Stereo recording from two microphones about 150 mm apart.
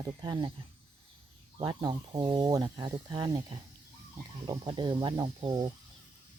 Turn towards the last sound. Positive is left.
turn(degrees=-25)  # may be behind; listen again after turning